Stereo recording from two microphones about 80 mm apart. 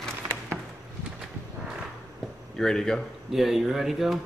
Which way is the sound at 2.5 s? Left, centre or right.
Centre.